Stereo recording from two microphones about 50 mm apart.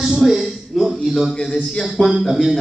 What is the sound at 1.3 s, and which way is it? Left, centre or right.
Speech, centre.